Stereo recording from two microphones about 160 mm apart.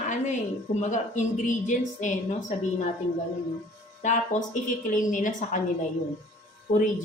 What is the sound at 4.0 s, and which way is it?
A man's voice, 55° left (ahead or behind).